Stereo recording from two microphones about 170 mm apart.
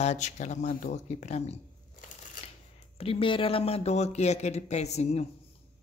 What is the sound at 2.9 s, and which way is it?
Speech, 35° left (ahead or behind).